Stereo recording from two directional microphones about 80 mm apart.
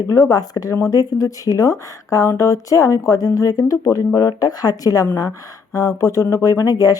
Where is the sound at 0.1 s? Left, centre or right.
Left.